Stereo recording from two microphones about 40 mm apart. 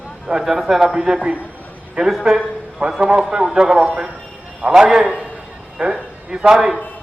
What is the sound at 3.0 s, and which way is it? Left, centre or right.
Speech, right.